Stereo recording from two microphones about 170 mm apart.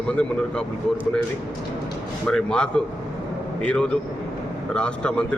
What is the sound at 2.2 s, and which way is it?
A man's voice, 5° left (ahead or behind).